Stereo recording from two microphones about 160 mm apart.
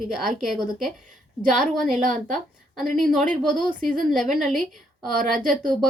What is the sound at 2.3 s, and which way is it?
A woman's voice, centre (ahead or behind).